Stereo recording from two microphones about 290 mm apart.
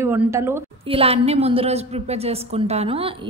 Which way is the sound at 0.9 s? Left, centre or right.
Centre.